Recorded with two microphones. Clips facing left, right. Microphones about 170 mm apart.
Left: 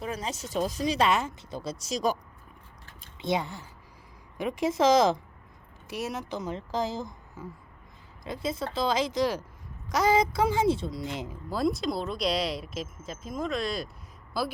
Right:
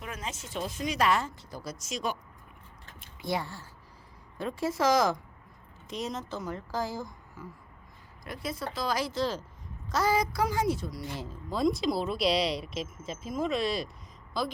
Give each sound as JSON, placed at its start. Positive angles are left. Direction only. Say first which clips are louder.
{"t": 0.0, "sound": "speech", "louder": "left 5 dB", "side_deg": 35}
{"t": 3.2, "sound": "a woman's voice", "louder": "left 4 dB", "side_deg": 20}
{"t": 5.9, "sound": "a woman's voice", "louder": "left 2 dB", "side_deg": 10}
{"t": 11.4, "sound": "speech", "louder": "right 1 dB", "side_deg": 0}